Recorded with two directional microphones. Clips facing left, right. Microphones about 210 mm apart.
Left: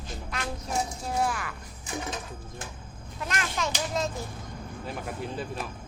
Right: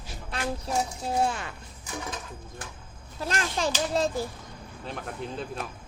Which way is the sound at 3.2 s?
30° right (ahead or behind).